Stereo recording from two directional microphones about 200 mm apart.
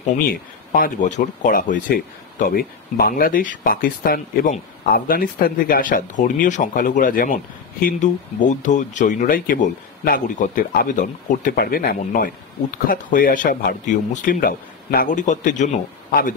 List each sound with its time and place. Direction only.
0.0 s speech: 45° left (ahead or behind)